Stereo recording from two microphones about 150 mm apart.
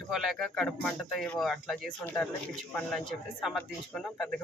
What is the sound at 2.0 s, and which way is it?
Speech, 10° left (ahead or behind).